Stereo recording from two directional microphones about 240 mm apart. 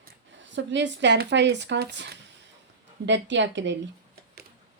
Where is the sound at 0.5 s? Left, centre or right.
Right.